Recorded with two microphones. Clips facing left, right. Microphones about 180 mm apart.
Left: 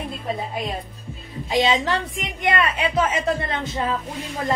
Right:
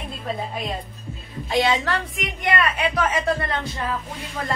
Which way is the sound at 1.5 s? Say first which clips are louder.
Left 1 dB; 15° left (ahead or behind).